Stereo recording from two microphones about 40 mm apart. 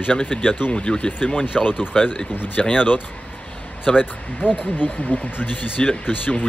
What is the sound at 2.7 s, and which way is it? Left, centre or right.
Speech, left.